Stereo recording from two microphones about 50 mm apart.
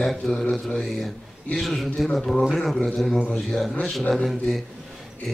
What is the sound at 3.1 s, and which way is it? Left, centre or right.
Speech, left.